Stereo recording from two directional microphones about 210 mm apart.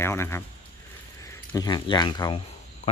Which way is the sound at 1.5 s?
20° left (ahead or behind).